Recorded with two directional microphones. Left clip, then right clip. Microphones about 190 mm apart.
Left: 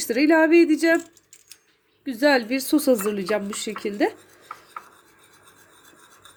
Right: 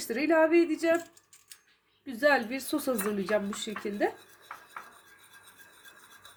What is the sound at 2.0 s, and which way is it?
A woman's voice, 40° left (ahead or behind).